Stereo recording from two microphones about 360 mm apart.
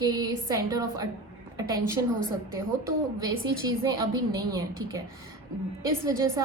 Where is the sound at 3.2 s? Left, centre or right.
Centre.